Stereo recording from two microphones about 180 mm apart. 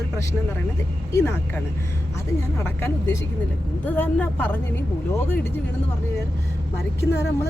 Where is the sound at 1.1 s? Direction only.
15° left (ahead or behind).